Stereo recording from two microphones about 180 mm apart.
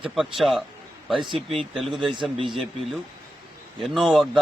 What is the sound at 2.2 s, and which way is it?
Speech, 30° right (ahead or behind).